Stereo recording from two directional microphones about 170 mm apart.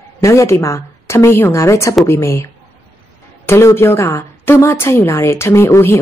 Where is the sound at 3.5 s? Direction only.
15° left (ahead or behind).